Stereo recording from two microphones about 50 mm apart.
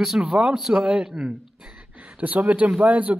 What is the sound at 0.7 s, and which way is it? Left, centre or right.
Speech, centre.